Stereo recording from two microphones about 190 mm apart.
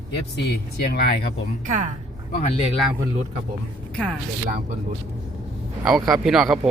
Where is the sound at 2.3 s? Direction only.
35° left (ahead or behind).